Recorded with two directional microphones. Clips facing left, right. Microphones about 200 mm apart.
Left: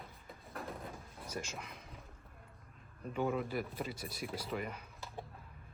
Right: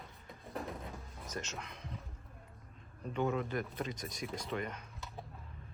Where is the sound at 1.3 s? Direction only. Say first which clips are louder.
Even; 10° left (ahead or behind).